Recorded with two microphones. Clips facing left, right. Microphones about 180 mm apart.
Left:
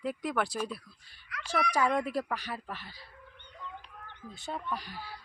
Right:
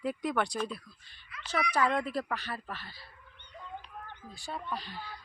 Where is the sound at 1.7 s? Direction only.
10° left (ahead or behind).